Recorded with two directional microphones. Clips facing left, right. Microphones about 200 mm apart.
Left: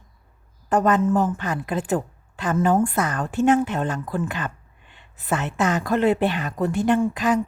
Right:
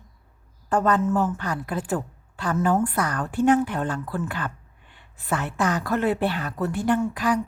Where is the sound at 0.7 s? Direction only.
20° left (ahead or behind).